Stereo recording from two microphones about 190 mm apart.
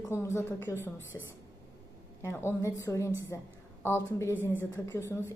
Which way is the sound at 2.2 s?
15° left (ahead or behind).